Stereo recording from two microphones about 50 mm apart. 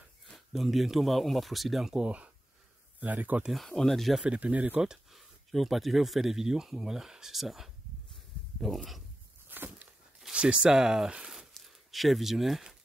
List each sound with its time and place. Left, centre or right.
0.5 s speech: centre
2.0 s speech: right
3.0 s speech: right
3.5 s speech: centre
4.2 s speech: right
4.8 s a sound: centre
5.5 s speech: centre
9.5 s a sound: right
10.3 s speech: centre
11.6 s speech: centre